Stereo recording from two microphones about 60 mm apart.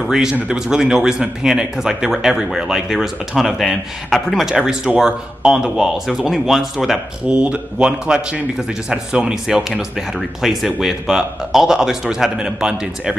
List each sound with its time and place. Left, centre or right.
0.0 s a man's voice: centre
4.5 s a man's voice: centre
7.3 s a man's voice: centre